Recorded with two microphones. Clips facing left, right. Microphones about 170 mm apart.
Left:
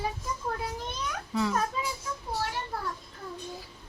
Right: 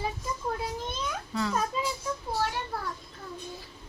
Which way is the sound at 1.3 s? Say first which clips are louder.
Left 2 dB; 15° left (ahead or behind).